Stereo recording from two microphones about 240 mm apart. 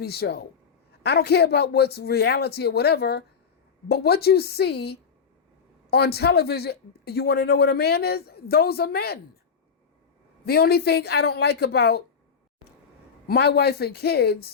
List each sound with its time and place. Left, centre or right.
0.0 s speech: left
10.4 s speech: left
13.2 s speech: left